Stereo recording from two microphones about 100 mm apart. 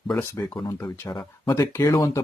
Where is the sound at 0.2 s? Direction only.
20° left (ahead or behind).